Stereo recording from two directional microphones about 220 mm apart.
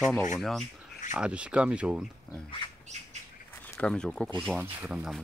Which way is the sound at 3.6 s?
5° left (ahead or behind).